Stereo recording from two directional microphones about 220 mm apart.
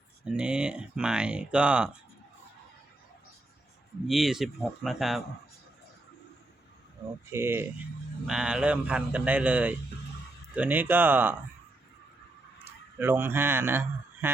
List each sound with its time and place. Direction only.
0.3 s speech: 5° right (ahead or behind)
4.0 s speech: centre (ahead or behind)
7.3 s speech: 10° right (ahead or behind)
12.6 s a man's voice: 10° right (ahead or behind)